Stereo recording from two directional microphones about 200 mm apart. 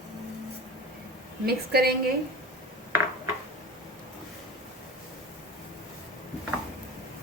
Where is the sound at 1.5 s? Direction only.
50° right (ahead or behind).